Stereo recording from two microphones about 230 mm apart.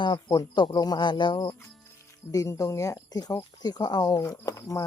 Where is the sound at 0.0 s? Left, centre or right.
Centre.